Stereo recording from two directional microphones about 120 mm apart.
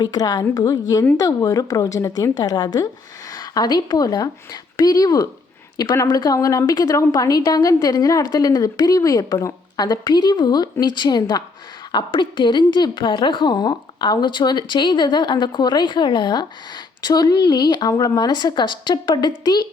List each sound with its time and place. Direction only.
0.0 s speech: 35° left (ahead or behind)